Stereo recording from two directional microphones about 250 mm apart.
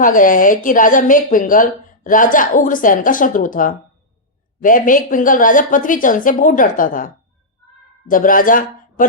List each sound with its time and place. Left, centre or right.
0.0 s a woman's voice: left